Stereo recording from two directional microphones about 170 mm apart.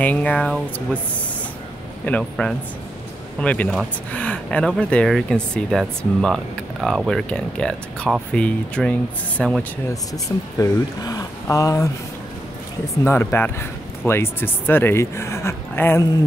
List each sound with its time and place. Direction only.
0.0 s speech: 10° left (ahead or behind)
2.0 s speech: 5° left (ahead or behind)
9.8 s speech: 20° left (ahead or behind)
12.9 s speech: 15° left (ahead or behind)